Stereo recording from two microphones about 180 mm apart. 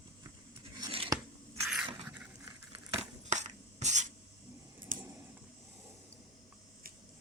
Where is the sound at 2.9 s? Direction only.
40° right (ahead or behind).